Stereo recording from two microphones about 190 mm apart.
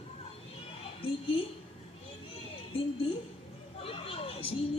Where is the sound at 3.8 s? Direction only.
30° left (ahead or behind).